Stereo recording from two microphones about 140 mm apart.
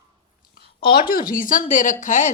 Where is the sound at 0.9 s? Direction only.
90° left; by 2.3 s 70° left (ahead or behind).